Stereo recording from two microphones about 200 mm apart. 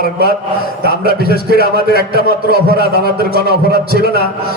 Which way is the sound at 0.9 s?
50° right (ahead or behind).